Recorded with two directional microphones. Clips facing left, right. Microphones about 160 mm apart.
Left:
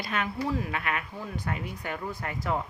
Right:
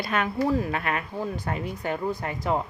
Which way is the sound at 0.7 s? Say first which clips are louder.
Right 4 dB; 40° right (ahead or behind).